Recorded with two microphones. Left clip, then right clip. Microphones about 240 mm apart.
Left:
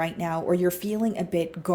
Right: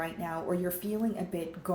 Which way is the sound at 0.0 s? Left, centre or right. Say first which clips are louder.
Left 7 dB; left.